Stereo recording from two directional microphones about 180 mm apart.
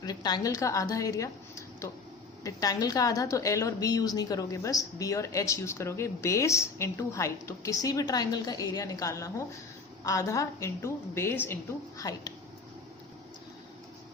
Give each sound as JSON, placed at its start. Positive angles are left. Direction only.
{"t": 0.0, "sound": "a woman's voice", "side_deg": 20}